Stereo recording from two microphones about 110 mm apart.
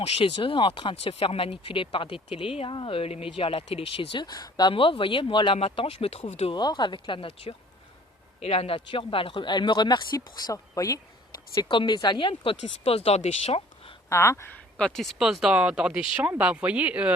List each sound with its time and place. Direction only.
0.3 s speech: 50° left (ahead or behind)
4.7 s speech: 55° left (ahead or behind)
5.5 s speech: 60° left (ahead or behind)
6.5 s speech: 40° left (ahead or behind)
8.4 s speech: 65° left (ahead or behind); by 11.0 s 30° left (ahead or behind)
11.5 s speech: 45° left (ahead or behind); by 13.6 s 65° left (ahead or behind)
14.1 s speech: 25° left (ahead or behind)
14.8 s speech: 5° left (ahead or behind); by 17.2 s 10° right (ahead or behind)